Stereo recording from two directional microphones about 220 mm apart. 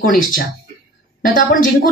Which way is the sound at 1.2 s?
40° left (ahead or behind).